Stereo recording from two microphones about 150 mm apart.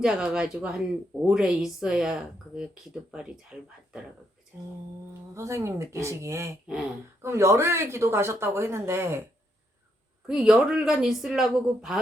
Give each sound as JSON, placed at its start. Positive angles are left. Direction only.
{"t": 0.0, "sound": "speech", "side_deg": -5}
{"t": 5.3, "sound": "speech", "side_deg": -20}
{"t": 10.2, "sound": "speech", "side_deg": -5}